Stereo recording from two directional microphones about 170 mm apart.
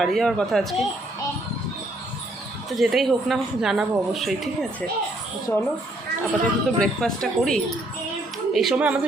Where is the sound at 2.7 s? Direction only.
Centre (ahead or behind).